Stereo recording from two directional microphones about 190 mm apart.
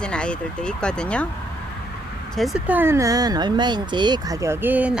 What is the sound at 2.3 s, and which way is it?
Speech, centre (ahead or behind).